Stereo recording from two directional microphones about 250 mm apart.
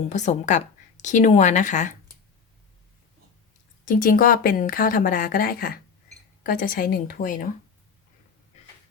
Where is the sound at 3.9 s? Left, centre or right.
Left.